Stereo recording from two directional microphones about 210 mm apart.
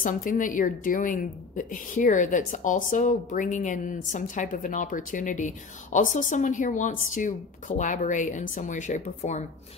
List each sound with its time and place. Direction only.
0.0 s speech: 40° left (ahead or behind)